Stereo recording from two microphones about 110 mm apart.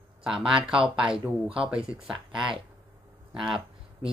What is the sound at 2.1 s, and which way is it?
Speech, 50° right (ahead or behind).